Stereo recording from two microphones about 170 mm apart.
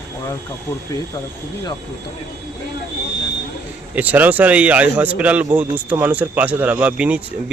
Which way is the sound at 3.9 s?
10° right (ahead or behind).